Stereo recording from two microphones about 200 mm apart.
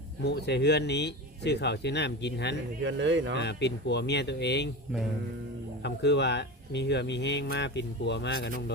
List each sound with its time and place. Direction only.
0.3 s speech: 55° left (ahead or behind)
2.8 s speech: 65° right (ahead or behind)
3.3 s speech: 60° left (ahead or behind)
5.8 s speech: 60° left (ahead or behind)